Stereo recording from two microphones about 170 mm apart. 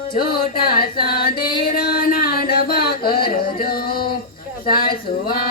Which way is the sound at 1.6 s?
55° left (ahead or behind).